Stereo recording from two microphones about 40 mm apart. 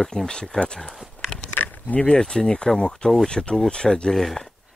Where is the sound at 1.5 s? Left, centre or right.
Left.